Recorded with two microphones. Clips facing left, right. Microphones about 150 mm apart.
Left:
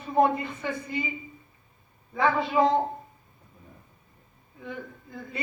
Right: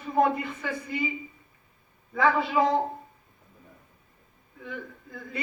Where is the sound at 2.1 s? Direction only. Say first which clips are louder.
Even; 25° left (ahead or behind).